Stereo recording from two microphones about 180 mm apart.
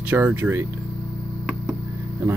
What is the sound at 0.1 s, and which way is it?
Speech, 10° right (ahead or behind).